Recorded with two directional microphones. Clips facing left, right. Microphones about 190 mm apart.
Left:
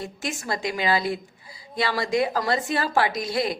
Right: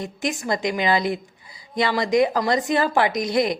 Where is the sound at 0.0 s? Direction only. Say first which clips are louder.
Right 5 dB; 20° right (ahead or behind).